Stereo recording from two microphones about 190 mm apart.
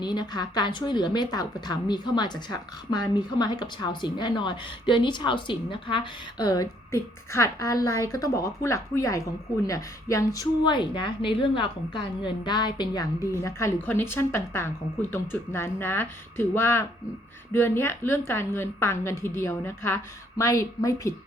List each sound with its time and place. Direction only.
0.0 s a woman's voice: 25° left (ahead or behind)